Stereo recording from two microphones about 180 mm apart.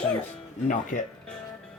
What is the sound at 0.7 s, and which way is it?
Speech, 45° left (ahead or behind).